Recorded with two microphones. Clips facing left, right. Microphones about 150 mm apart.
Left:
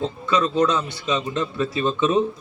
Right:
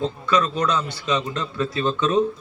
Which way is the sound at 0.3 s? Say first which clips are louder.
Left 2 dB; 25° left (ahead or behind).